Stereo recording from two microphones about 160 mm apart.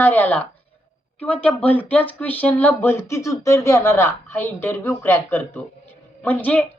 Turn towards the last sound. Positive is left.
turn(degrees=10)  # may be behind; listen again after turning